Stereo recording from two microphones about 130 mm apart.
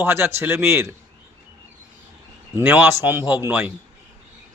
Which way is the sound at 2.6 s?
15° right (ahead or behind).